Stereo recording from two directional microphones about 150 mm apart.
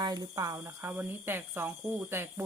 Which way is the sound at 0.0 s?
25° right (ahead or behind).